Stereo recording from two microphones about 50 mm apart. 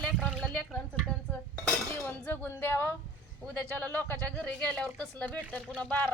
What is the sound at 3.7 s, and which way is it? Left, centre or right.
Speech, left.